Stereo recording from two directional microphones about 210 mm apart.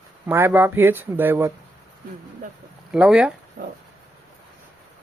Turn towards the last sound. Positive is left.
turn(degrees=-45)  # may be behind; listen again after turning